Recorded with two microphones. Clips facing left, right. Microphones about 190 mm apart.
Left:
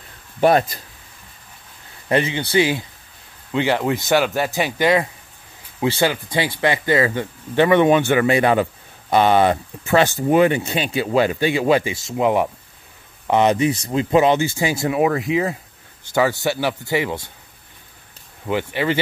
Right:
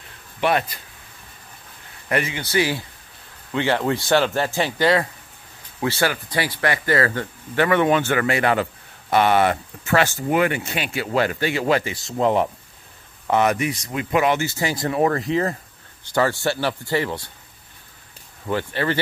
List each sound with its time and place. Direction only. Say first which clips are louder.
0.4 s speech: left 6 dB; 40° left (ahead or behind)
2.0 s speech: left 4 dB; 25° left (ahead or behind); by 12.4 s 10° left (ahead or behind)
13.3 s speech: left 3 dB; 20° left (ahead or behind)
18.5 s speech: left 2 dB; 10° left (ahead or behind)